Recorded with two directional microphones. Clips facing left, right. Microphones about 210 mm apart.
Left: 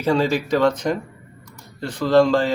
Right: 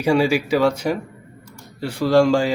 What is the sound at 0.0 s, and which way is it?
Speech, 10° right (ahead or behind).